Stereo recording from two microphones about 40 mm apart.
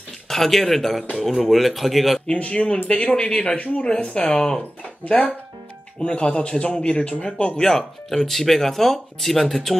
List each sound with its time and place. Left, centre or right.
0.3 s speech: centre
2.3 s speech: left
8.1 s speech: centre